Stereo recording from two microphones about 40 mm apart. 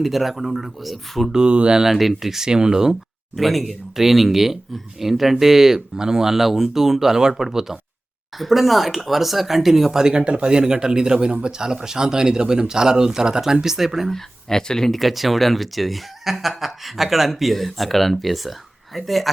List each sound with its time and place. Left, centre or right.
0.0 s speech: centre
1.3 s speech: right
1.8 s speech: centre
2.9 s speech: centre
14.1 s speech: centre
14.9 s speech: centre